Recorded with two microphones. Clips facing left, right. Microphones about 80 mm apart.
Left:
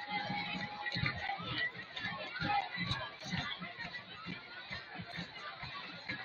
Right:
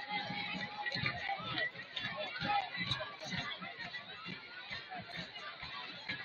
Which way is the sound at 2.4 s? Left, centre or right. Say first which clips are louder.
Left 1 dB; centre.